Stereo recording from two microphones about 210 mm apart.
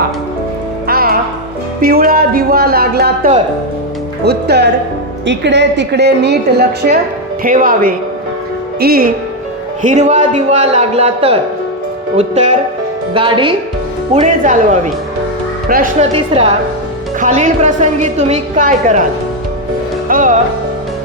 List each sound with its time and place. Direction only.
0.9 s music: 45° right (ahead or behind)
1.8 s speech: 45° right (ahead or behind)
4.3 s a woman's voice: 50° right (ahead or behind)
9.8 s a woman's voice: 35° right (ahead or behind)
14.1 s a woman's voice: 35° right (ahead or behind)
16.1 s a woman's voice: 25° right (ahead or behind)
20.1 s music: 40° right (ahead or behind)